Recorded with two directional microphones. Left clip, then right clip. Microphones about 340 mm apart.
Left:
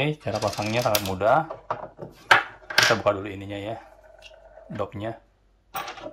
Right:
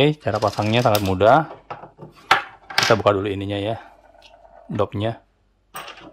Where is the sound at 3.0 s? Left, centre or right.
Centre.